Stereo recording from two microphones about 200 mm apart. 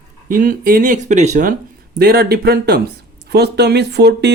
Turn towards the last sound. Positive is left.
turn(degrees=-55)  # may be behind; listen again after turning